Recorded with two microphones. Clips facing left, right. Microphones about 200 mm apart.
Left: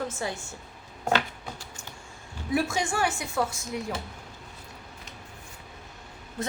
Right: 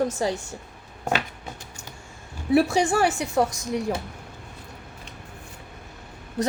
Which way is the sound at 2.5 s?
35° right (ahead or behind).